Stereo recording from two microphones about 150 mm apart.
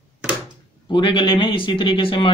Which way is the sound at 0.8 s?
30° left (ahead or behind).